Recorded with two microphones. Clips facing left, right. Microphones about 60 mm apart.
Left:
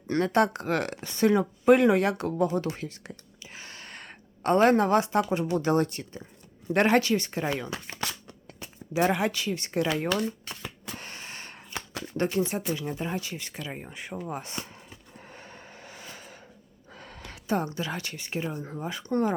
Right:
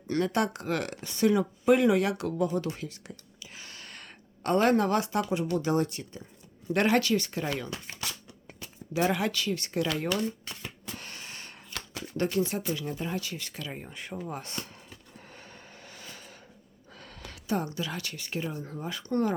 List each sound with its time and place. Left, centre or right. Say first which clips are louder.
0.1 s speech: left 4 dB; left
2.7 s a sound: left 2 dB; left
5.5 s speech: left 4 dB; left
6.7 s speech: left 2 dB; left
7.7 s shuffling cards: left 4 dB; left
8.5 s a sound: left 3 dB; left
9.1 s speech: left 1 dB; left
10.9 s gasp: left 2 dB; left
11.9 s speech: left 1 dB; left
12.7 s a sound: left 2 dB; left
17.3 s speech: left 2 dB; left